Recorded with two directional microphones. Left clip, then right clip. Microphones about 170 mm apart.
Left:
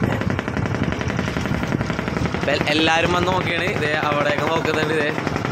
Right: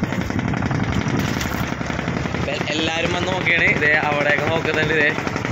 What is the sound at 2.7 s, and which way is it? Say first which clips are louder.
Speech: left 5 dB; 45° left (ahead or behind).